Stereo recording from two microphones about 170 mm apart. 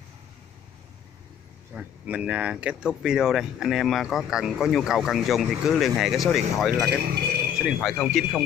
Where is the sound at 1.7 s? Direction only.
5° right (ahead or behind).